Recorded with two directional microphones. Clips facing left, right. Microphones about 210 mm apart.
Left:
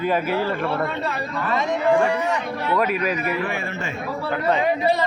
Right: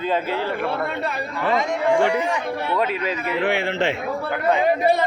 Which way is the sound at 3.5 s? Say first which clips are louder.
Right 7 dB; 80° right.